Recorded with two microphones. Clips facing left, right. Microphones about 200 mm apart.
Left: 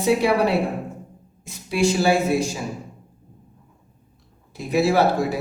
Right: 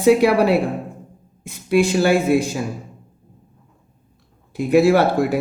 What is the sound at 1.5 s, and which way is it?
Speech, 60° right (ahead or behind).